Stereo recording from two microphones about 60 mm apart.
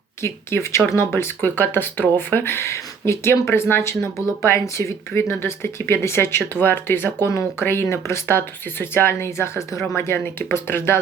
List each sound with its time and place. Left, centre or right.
0.2 s speech: left
1.4 s speech: left